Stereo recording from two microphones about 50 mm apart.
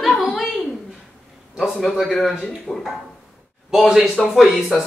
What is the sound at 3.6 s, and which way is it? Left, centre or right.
Speech, centre.